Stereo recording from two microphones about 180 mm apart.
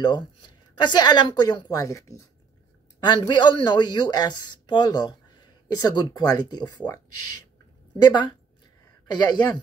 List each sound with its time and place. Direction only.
0.0 s speech: 25° left (ahead or behind)